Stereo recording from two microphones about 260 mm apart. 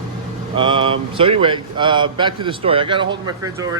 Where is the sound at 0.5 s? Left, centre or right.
Centre.